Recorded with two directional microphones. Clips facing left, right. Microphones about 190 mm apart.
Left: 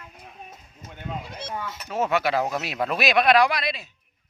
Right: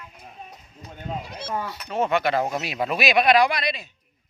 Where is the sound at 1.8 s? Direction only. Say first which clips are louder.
Right 1 dB; 5° left (ahead or behind).